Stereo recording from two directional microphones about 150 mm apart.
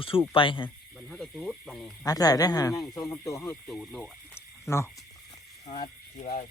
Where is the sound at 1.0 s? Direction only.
5° left (ahead or behind).